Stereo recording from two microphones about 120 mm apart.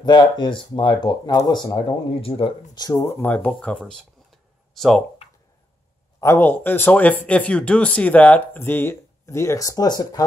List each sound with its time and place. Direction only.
0.0 s speech: 35° left (ahead or behind)
1.9 s speech: 45° left (ahead or behind)
3.0 s speech: 20° left (ahead or behind); by 5.0 s centre (ahead or behind)
6.2 s speech: 20° left (ahead or behind)